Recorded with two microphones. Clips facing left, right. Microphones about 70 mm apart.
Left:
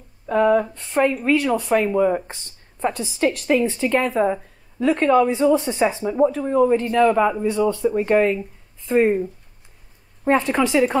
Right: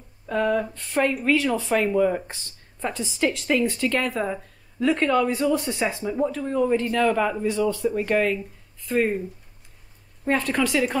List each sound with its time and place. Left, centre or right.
0.3 s speech: centre
0.7 s a woman's voice: centre